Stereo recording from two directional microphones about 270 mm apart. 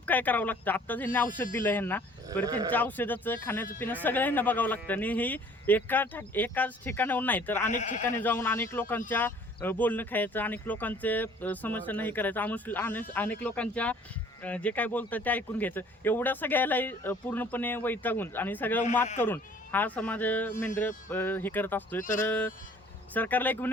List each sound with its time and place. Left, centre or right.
0.0 s speech: centre
7.7 s speech: left
8.2 s speech: centre
22.0 s speech: left
22.3 s speech: centre